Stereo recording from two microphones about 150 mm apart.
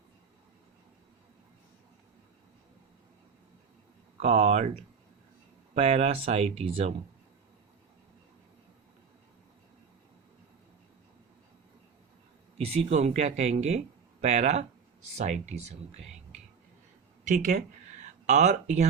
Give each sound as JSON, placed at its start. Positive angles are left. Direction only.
{"t": 4.2, "sound": "speech", "side_deg": -45}
{"t": 5.7, "sound": "speech", "side_deg": -45}
{"t": 12.5, "sound": "a man's voice", "side_deg": -45}
{"t": 17.2, "sound": "speech", "side_deg": -55}